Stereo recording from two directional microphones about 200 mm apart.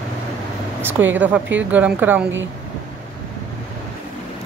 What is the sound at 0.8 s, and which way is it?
A woman's voice, 10° right (ahead or behind).